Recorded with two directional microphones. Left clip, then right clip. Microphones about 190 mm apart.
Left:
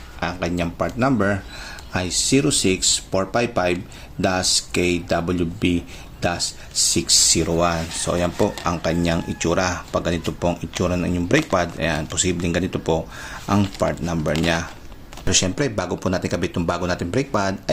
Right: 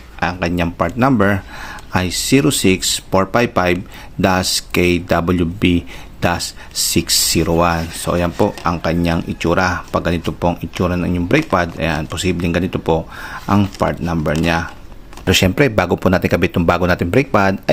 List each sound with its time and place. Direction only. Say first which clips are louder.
0.2 s speech: right 6 dB; 35° right (ahead or behind)
15.3 s speech: right 7 dB; 45° right (ahead or behind)